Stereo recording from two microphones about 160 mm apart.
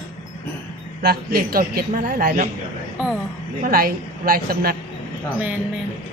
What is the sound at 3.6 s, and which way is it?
A woman's voice, 65° right (ahead or behind).